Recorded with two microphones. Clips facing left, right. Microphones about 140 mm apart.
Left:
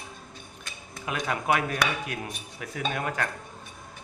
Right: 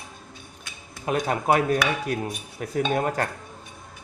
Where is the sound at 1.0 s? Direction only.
40° right (ahead or behind).